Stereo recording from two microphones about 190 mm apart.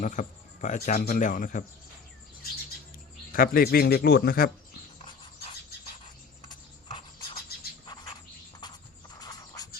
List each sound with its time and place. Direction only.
0.0 s speech: 40° left (ahead or behind)
3.3 s speech: 50° left (ahead or behind)
4.9 s a sound: 25° left (ahead or behind)
8.6 s horse: 20° left (ahead or behind)